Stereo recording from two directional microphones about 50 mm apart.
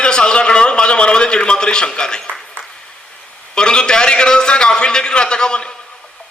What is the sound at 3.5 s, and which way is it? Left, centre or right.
A man's voice, centre.